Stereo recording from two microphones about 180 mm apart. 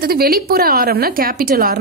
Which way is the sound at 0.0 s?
55° right (ahead or behind).